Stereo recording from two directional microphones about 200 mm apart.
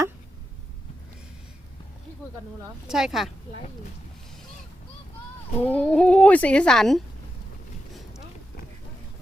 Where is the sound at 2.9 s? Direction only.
Centre (ahead or behind).